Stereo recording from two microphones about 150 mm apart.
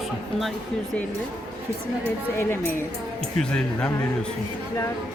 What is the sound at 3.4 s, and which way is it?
Speech, 5° left (ahead or behind).